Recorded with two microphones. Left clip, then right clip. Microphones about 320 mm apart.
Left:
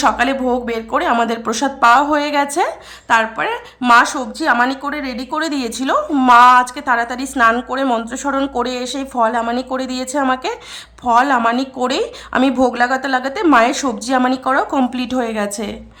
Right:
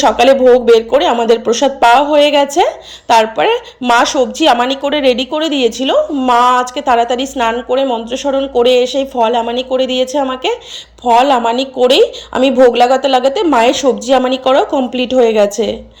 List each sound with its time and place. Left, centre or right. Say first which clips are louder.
0.0 s speech: right 8 dB; centre
4.7 s speech: right 11 dB; centre
5.3 s speech: right 7 dB; centre
9.3 s speech: right 4 dB; centre
10.2 s speech: right 3 dB; centre